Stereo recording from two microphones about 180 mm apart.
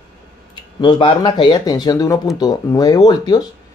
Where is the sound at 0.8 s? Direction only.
25° left (ahead or behind).